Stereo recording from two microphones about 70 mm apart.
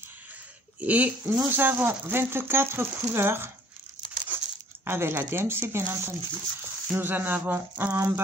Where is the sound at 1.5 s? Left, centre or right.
Right.